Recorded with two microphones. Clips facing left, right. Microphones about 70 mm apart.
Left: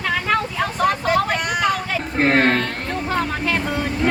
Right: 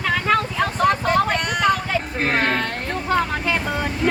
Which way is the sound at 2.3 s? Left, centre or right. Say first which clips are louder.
Left 3 dB; centre.